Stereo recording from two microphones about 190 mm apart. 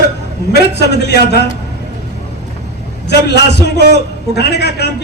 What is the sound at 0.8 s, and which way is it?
Speech, 60° left (ahead or behind).